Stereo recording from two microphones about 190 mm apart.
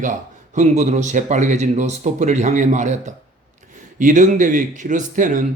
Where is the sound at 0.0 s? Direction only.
40° right (ahead or behind).